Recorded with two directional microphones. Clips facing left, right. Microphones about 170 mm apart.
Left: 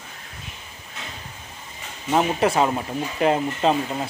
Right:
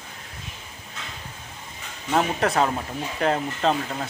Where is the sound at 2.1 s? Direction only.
10° left (ahead or behind).